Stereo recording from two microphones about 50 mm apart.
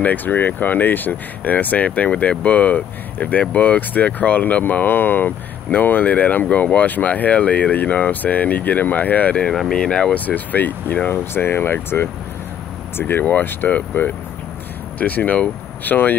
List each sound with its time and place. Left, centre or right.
0.0 s speech: left
9.7 s speech: centre
10.1 s speech: left